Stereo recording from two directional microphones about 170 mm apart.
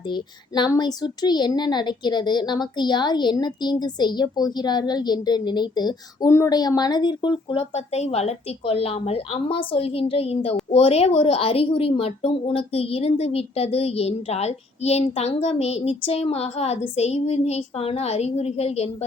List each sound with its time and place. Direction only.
0.1 s a child's voice: 25° left (ahead or behind)